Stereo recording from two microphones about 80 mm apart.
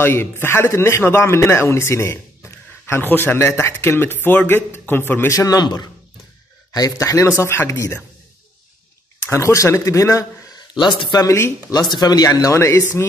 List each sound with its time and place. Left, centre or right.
0.0 s a man's voice: left
3.3 s a man's voice: left
5.3 s a man's voice: left
5.6 s speech: left
6.7 s a man's voice: left
9.3 s a man's voice: left
10.8 s speech: left
11.2 s a man's voice: left
11.9 s speech: left
12.3 s a man's voice: left